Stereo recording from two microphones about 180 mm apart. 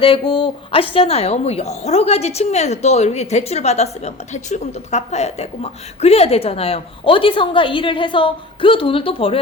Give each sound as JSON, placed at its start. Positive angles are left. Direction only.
{"t": 0.0, "sound": "a woman's voice", "side_deg": 30}